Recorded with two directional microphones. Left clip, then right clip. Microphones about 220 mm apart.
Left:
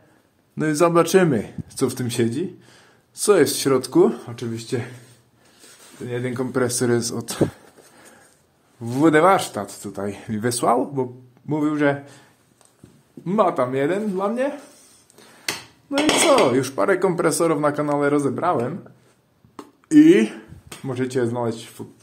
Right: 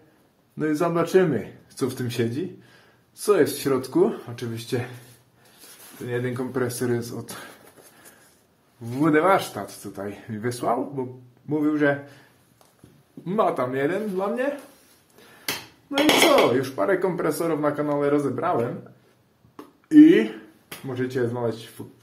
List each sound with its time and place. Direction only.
0.6 s speech: 40° left (ahead or behind); by 4.8 s 20° left (ahead or behind)
6.0 s speech: 30° left (ahead or behind)
8.8 s speech: 40° left (ahead or behind)
13.2 s speech: 35° left (ahead or behind)
15.9 s speech: 35° left (ahead or behind)
19.5 s a sound: 40° left (ahead or behind)
20.8 s speech: 40° left (ahead or behind)